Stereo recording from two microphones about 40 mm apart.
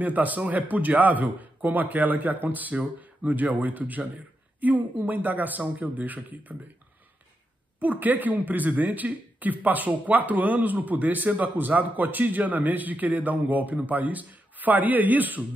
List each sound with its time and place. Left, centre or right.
0.0 s speech: right
7.8 s speech: right